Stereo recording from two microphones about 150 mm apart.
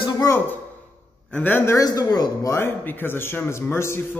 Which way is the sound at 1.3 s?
10° left (ahead or behind).